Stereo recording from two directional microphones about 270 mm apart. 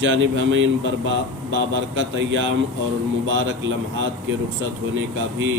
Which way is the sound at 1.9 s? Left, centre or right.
Right.